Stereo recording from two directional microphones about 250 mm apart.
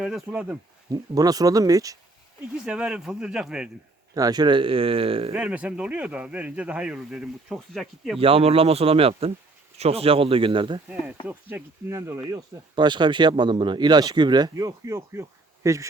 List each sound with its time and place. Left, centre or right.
0.0 s speech: centre
4.1 s speech: centre
5.3 s speech: centre
8.2 s speech: right
11.3 s speech: centre